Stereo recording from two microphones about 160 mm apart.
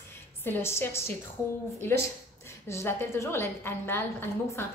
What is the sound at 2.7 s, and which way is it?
A woman's voice, 15° left (ahead or behind).